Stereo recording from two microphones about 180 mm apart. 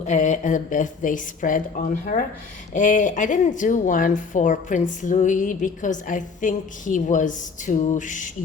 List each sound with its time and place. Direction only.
0.0 s speech: 40° left (ahead or behind)
2.7 s speech: 45° left (ahead or behind)